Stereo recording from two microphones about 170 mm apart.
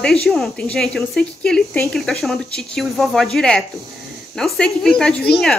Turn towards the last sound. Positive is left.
turn(degrees=5)  # may be behind; listen again after turning